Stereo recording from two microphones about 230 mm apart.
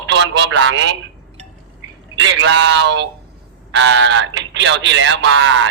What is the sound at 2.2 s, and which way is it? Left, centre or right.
Speech, right.